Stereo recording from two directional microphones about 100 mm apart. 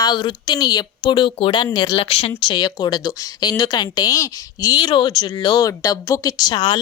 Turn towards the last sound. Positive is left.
turn(degrees=50)  # may be behind; listen again after turning